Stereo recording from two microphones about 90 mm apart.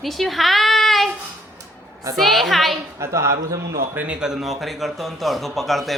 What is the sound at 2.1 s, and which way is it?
Speech, centre (ahead or behind).